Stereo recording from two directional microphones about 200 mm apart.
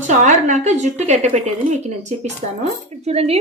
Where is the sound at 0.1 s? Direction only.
35° right (ahead or behind).